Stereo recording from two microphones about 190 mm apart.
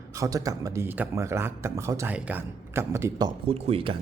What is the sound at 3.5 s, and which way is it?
Speech, 30° right (ahead or behind).